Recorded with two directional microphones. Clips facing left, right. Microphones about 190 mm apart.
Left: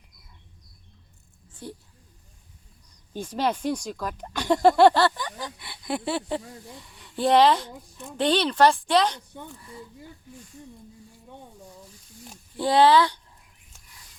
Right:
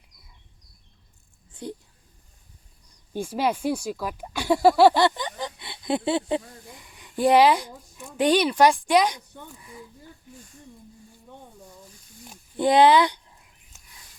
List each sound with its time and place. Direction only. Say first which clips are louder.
1.6 s speech: right 4 dB; 20° right (ahead or behind)
3.1 s speech: right 1 dB; 10° right (ahead or behind)
5.0 s speech: right 2 dB; 20° right (ahead or behind)
12.5 s speech: right 1 dB; 20° right (ahead or behind)